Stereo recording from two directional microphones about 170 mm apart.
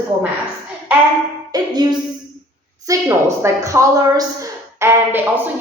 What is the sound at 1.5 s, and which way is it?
Music, 25° right (ahead or behind).